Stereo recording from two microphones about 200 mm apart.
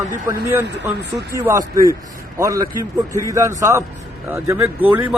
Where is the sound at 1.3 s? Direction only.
15° right (ahead or behind).